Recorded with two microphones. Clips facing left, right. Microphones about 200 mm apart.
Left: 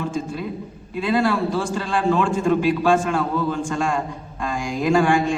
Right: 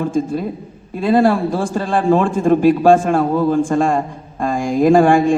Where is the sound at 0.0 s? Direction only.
50° right (ahead or behind).